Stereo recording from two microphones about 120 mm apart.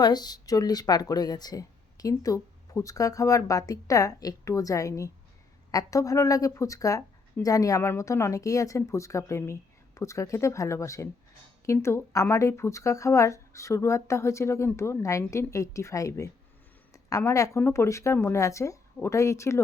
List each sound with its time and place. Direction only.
0.0 s a woman's voice: 35° left (ahead or behind)